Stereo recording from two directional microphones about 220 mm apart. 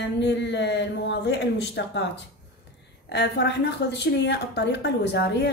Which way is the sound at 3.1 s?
50° left (ahead or behind).